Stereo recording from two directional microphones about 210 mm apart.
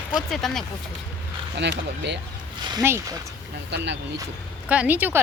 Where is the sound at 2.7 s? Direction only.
15° right (ahead or behind).